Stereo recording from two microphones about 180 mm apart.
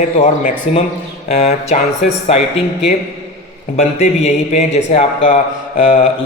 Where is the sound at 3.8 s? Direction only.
35° left (ahead or behind).